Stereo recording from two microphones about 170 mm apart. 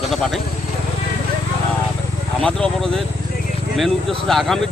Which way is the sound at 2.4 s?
5° left (ahead or behind).